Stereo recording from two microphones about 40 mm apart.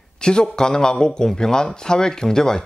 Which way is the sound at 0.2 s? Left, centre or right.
Centre.